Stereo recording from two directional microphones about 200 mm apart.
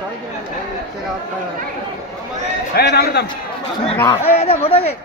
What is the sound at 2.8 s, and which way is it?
Speech, 55° left (ahead or behind).